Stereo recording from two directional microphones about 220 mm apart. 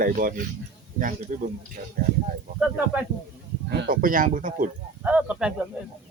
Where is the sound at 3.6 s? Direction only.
45° right (ahead or behind).